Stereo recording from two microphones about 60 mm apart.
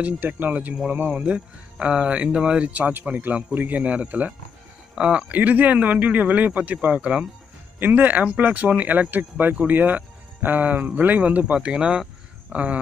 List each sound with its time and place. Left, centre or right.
0.0 s speech: right
2.7 s speech: right; by 12.0 s centre
12.5 s speech: right